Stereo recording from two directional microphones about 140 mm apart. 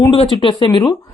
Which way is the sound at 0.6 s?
35° left (ahead or behind).